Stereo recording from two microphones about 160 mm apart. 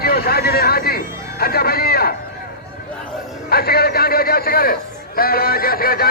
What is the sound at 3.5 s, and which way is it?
Speech, 75° left (ahead or behind).